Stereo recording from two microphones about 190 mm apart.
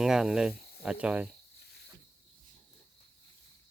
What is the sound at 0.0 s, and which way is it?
Speech, centre (ahead or behind).